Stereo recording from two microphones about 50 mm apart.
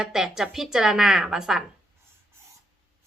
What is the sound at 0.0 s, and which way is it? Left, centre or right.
A woman's voice, centre.